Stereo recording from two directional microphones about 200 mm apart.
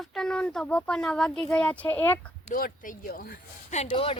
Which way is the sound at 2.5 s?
45° left (ahead or behind).